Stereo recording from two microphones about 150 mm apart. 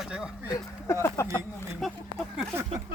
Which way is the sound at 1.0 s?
20° left (ahead or behind).